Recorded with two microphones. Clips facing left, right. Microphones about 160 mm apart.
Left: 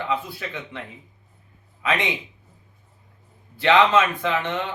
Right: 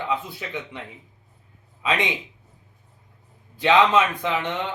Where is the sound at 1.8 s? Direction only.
15° right (ahead or behind).